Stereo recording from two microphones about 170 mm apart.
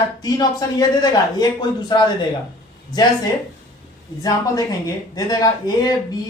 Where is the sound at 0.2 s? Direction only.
25° left (ahead or behind).